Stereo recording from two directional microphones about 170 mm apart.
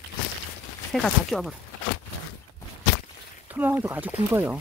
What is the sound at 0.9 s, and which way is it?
Speech, centre (ahead or behind).